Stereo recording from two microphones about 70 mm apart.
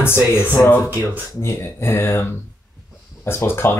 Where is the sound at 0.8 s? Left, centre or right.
Right.